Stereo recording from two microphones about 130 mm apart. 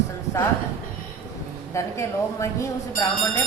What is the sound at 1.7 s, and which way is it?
A woman's voice, 25° left (ahead or behind).